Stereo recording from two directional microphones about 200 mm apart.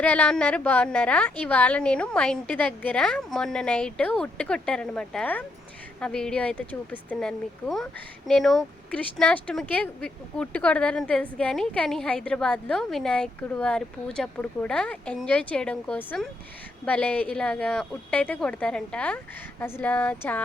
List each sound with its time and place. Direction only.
0.0 s speech: 5° left (ahead or behind)